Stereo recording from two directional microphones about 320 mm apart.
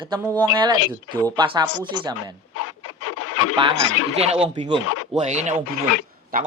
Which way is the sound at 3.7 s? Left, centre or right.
Left.